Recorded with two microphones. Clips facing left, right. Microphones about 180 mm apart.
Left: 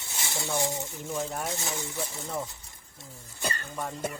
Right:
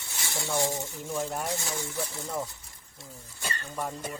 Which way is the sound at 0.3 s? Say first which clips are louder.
Right 1 dB; 15° left (ahead or behind).